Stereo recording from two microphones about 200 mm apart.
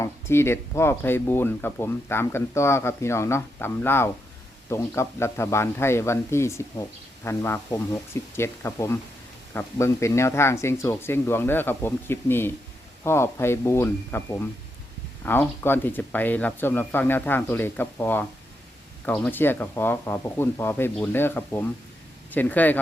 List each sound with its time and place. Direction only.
0.0 s speech: 10° left (ahead or behind)